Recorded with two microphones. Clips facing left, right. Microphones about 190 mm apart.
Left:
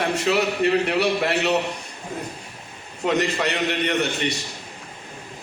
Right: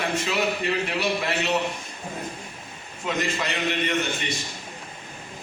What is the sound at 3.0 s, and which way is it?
A man's voice, 65° left (ahead or behind).